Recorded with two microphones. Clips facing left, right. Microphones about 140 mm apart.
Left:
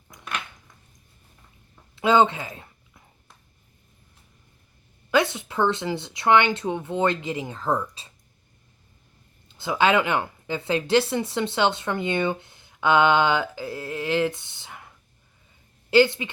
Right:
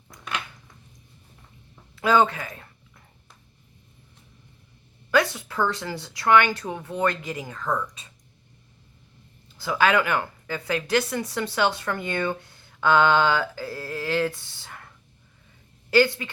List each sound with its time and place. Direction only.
2.0 s speech: 20° left (ahead or behind)
5.1 s speech: 20° left (ahead or behind)
9.6 s speech: 25° left (ahead or behind)